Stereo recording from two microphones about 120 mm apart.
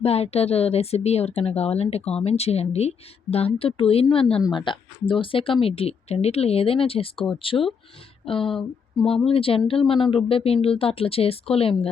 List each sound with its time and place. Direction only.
0.0 s a woman's voice: 60° left (ahead or behind)
7.5 s speech: 25° left (ahead or behind)
8.2 s speech: 50° left (ahead or behind)